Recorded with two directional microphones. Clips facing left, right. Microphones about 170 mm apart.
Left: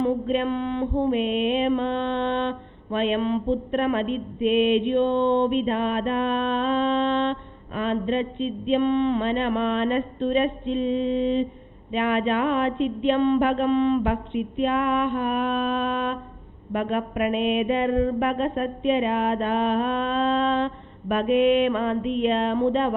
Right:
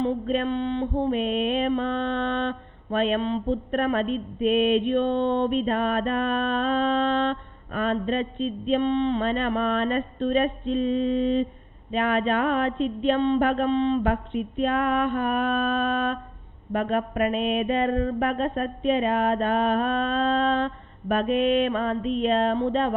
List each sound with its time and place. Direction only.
0.0 s mantra: 35° right (ahead or behind)